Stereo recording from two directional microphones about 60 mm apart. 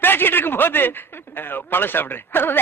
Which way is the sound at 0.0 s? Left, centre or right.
Left.